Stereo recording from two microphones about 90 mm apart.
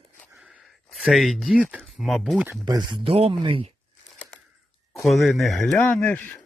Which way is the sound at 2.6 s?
60° right (ahead or behind).